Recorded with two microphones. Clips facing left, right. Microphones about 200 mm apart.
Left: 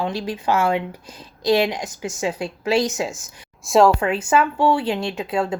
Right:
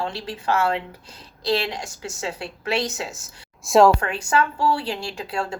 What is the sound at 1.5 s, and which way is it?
Speech, 20° left (ahead or behind).